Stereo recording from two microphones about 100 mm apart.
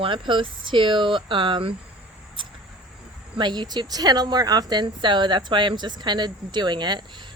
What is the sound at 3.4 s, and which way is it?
Speech, 50° right (ahead or behind).